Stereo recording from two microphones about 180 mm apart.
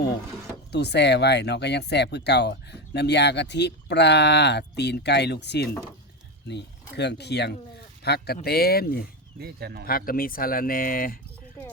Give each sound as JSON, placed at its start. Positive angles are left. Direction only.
{"t": 0.7, "sound": "speech", "side_deg": 70}
{"t": 9.4, "sound": "speech", "side_deg": -60}
{"t": 9.8, "sound": "speech", "side_deg": 55}